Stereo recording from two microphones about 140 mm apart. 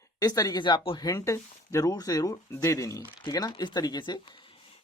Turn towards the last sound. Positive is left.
turn(degrees=35)  # may be behind; listen again after turning